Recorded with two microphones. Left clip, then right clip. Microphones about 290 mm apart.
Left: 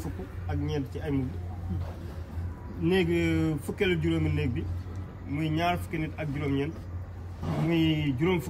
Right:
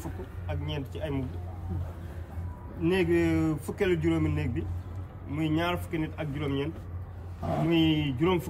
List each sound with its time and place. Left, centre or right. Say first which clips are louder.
0.5 s speech: left 4 dB; centre
2.9 s a man's voice: right 1 dB; centre